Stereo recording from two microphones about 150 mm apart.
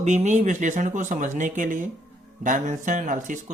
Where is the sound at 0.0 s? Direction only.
50° right (ahead or behind).